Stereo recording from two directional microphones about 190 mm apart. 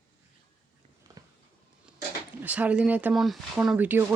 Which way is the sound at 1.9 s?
10° right (ahead or behind).